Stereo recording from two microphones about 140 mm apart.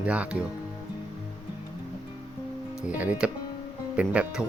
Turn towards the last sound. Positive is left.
turn(degrees=-10)  # may be behind; listen again after turning